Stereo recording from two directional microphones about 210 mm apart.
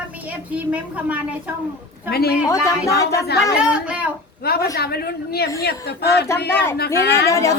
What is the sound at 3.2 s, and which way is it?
Speech, 50° left (ahead or behind).